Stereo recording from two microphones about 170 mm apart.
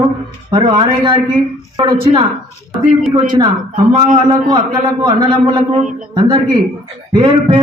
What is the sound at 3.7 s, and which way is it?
Speech, 50° right (ahead or behind).